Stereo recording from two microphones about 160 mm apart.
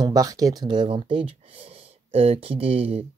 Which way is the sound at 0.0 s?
20° right (ahead or behind).